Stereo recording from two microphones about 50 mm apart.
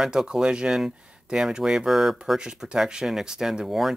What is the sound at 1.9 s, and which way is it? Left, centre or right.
Speech, centre.